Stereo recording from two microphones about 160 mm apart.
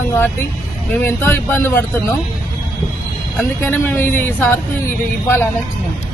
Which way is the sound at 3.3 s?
10° left (ahead or behind).